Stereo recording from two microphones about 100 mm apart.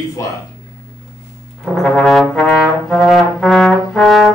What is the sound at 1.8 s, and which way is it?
Brass instrument, 5° left (ahead or behind).